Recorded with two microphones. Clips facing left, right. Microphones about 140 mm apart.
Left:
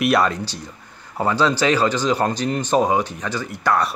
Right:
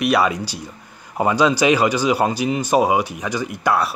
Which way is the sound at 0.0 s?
5° right (ahead or behind).